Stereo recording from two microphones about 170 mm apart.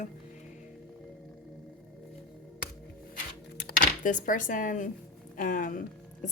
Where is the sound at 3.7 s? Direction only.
50° left (ahead or behind).